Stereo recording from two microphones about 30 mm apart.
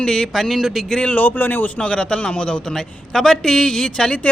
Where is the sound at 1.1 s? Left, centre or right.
Left.